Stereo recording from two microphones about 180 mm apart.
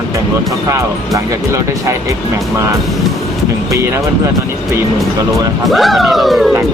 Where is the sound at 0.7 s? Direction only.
15° right (ahead or behind).